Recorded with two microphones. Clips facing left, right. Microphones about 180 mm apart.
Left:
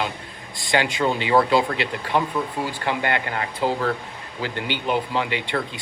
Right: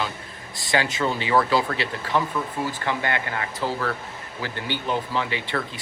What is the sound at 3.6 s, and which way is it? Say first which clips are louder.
Speech: left 5 dB; 15° left (ahead or behind).